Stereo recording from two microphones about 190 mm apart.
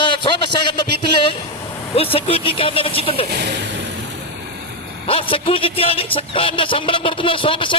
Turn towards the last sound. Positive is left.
turn(degrees=25)  # may be behind; listen again after turning